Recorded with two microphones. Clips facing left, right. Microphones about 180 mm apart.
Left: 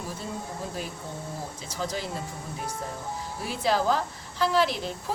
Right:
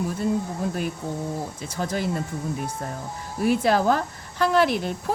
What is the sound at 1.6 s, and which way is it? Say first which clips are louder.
Speech: right 4 dB; 55° right (ahead or behind).